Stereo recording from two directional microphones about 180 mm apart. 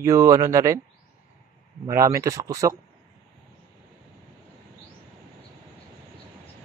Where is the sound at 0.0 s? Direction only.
20° right (ahead or behind).